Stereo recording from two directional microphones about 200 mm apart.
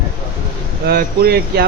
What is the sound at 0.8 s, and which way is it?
Speech, 50° right (ahead or behind).